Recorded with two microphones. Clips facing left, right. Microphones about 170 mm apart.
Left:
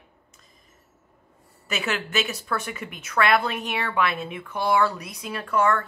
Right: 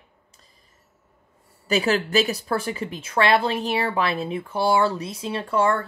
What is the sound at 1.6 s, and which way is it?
Speech, 35° right (ahead or behind).